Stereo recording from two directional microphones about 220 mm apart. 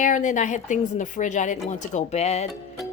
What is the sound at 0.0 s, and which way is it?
A woman's voice, 35° left (ahead or behind).